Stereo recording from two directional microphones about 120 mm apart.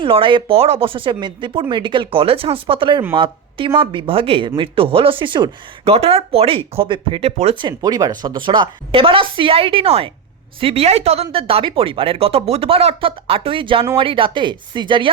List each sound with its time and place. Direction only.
0.0 s speech: 45° right (ahead or behind)
7.7 s speech: 30° right (ahead or behind)